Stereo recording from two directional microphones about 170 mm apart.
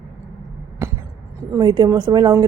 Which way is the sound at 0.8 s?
15° right (ahead or behind).